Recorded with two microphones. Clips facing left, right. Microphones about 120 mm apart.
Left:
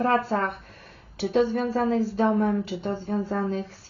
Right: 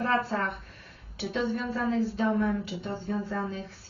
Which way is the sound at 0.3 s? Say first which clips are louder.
Left 5 dB; 45° left (ahead or behind).